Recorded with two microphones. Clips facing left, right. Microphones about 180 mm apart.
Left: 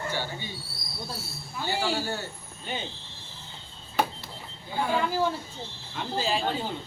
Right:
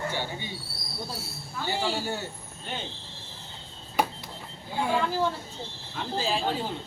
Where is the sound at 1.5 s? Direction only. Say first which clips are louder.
Left 1 dB; 10° left (ahead or behind).